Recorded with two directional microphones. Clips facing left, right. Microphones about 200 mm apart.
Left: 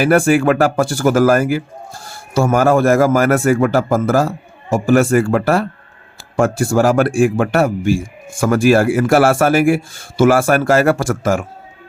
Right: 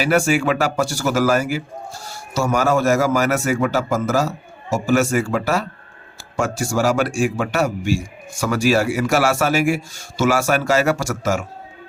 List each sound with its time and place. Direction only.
0.0 s a man's voice: 55° left (ahead or behind)